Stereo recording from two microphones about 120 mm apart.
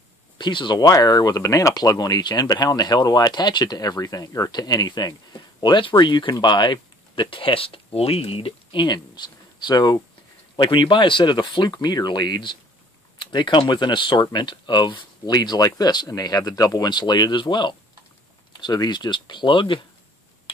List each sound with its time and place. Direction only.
0.4 s speech: 40° left (ahead or behind)